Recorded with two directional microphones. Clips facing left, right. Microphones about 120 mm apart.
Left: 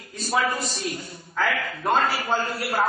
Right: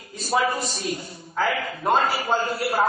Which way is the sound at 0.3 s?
20° right (ahead or behind).